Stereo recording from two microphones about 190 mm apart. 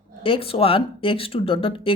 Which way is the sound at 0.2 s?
30° left (ahead or behind).